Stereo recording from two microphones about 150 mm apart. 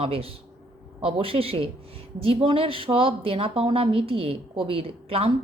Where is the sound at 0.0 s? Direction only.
40° right (ahead or behind).